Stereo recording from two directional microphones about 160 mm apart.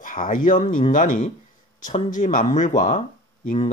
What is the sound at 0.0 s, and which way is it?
Speech, 55° left (ahead or behind).